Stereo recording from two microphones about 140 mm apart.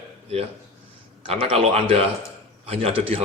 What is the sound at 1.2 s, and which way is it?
A man's voice, 45° right (ahead or behind).